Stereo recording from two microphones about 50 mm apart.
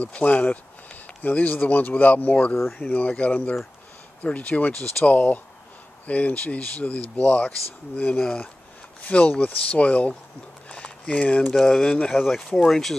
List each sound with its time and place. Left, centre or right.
0.0 s speech: left
10.7 s a sound: left
11.5 s speech: centre
11.8 s speech: centre
12.1 s speech: centre
12.4 s speech: centre